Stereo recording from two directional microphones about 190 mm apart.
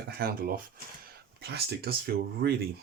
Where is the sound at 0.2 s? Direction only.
50° right (ahead or behind).